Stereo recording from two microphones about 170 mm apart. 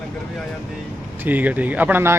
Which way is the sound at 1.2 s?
10° right (ahead or behind).